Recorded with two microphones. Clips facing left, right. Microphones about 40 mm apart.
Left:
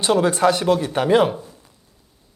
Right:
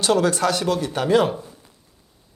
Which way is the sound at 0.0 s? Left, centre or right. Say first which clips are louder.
Left 2 dB; left.